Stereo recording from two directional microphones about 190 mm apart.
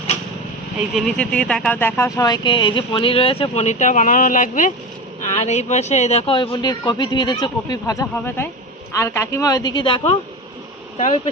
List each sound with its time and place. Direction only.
1.0 s a woman's voice: 5° left (ahead or behind); by 11.2 s 35° left (ahead or behind)